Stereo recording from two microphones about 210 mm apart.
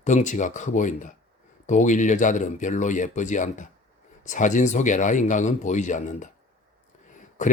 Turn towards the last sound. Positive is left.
turn(degrees=35)  # may be behind; listen again after turning